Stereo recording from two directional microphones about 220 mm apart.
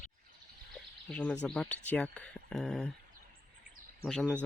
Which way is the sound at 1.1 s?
5° left (ahead or behind).